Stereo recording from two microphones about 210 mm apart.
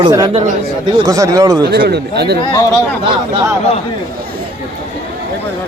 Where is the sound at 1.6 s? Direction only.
50° right (ahead or behind).